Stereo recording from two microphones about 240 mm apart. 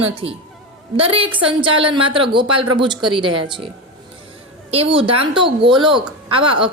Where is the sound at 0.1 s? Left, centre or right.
Right.